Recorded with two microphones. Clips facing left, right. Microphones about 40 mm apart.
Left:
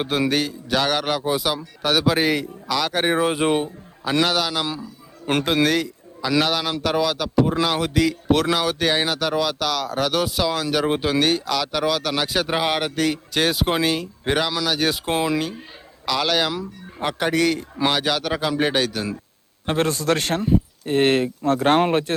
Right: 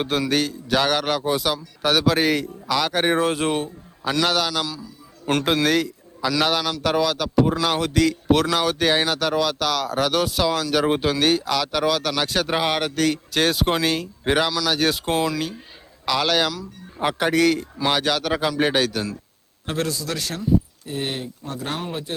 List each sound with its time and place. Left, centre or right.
0.3 s speech: centre
4.2 s speech: centre
4.6 s a man's voice: left
5.2 s a man's voice: centre
5.6 s a sound: centre
6.8 s speech: centre
15.1 s speech: centre
16.0 s speech: centre
19.6 s a man's voice: left
19.9 s speech: left